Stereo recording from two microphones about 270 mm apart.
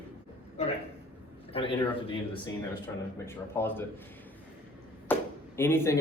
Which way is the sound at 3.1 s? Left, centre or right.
Centre.